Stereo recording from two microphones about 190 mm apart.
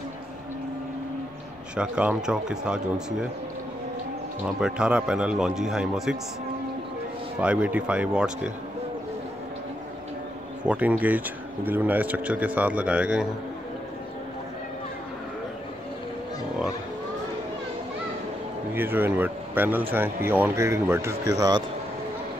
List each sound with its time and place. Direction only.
1.8 s speech: 5° right (ahead or behind)
4.5 s speech: 5° right (ahead or behind)
7.3 s speech: 5° right (ahead or behind)
10.6 s speech: 5° right (ahead or behind)
18.8 s speech: 10° right (ahead or behind)